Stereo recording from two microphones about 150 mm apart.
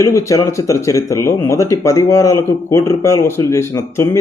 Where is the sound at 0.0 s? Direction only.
20° left (ahead or behind).